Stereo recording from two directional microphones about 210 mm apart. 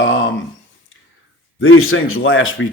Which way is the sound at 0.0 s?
65° left (ahead or behind).